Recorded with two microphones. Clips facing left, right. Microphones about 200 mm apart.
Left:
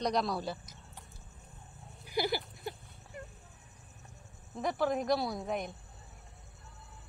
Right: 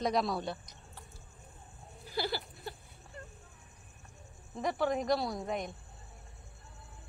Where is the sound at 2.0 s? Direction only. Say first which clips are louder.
Left 3 dB; 15° left (ahead or behind).